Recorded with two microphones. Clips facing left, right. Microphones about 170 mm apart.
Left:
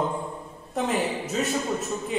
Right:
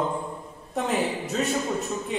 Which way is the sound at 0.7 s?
Centre (ahead or behind).